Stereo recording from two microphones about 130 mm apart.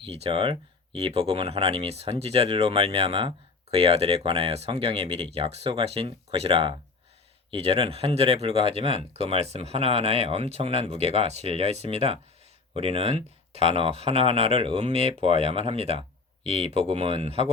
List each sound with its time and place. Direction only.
0.0 s speech: 45° right (ahead or behind)